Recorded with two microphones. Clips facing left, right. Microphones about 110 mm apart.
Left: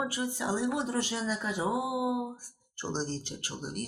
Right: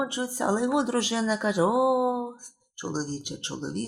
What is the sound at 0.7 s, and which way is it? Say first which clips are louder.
Speech: right 7 dB; 85° right.